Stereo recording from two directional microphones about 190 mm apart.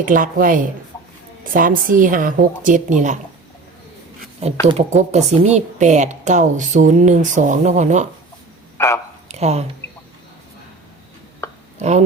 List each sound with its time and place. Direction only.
0.0 s a woman's voice: 45° right (ahead or behind)
4.6 s a woman's voice: 35° right (ahead or behind)
8.8 s a man's voice: 15° left (ahead or behind)
9.3 s speech: 35° right (ahead or behind)
11.4 s a sound: 15° left (ahead or behind)
11.8 s a woman's voice: 35° right (ahead or behind)